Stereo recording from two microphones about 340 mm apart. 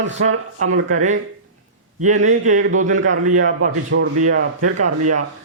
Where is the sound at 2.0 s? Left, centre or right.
Right.